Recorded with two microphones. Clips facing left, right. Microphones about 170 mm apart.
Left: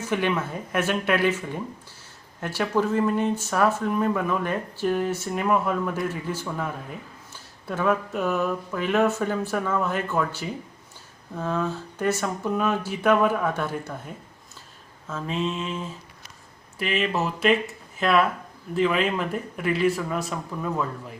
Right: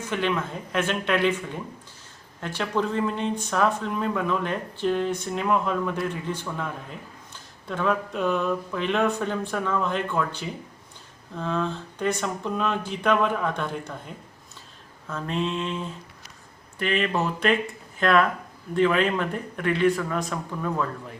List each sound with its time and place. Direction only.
0.0 s speech: 10° left (ahead or behind)
15.0 s speech: 5° left (ahead or behind)